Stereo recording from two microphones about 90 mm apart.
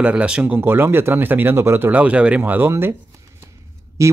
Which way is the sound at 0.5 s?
25° right (ahead or behind).